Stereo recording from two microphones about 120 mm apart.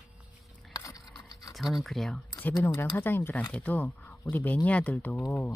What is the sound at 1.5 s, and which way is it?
Speech, centre (ahead or behind).